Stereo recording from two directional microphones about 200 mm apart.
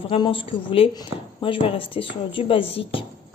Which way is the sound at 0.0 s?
25° left (ahead or behind).